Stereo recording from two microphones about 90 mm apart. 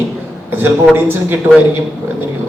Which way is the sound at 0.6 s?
25° right (ahead or behind).